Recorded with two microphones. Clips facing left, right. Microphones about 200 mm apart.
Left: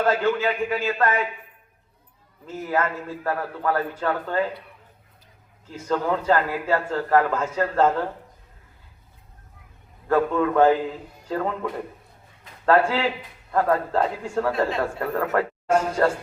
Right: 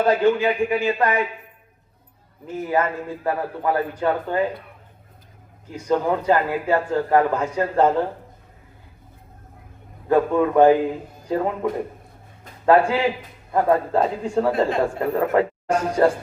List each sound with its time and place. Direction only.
0.0 s a man's voice: 15° right (ahead or behind)
2.5 s a man's voice: 15° right (ahead or behind)
5.6 s a man's voice: 15° right (ahead or behind)
10.1 s a man's voice: 15° right (ahead or behind)